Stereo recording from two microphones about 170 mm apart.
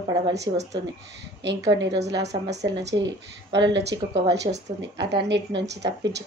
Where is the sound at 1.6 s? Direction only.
90° right.